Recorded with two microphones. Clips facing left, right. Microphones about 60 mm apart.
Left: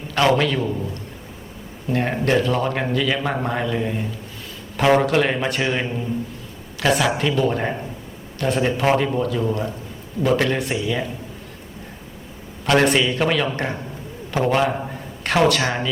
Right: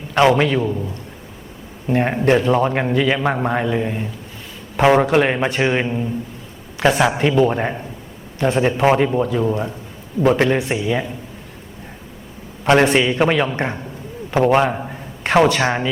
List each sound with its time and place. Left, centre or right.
0.1 s a man's voice: right
1.9 s a man's voice: right
5.8 s speech: centre
6.8 s a man's voice: right
12.8 s a man's voice: right
14.7 s a man's voice: centre
15.2 s a man's voice: right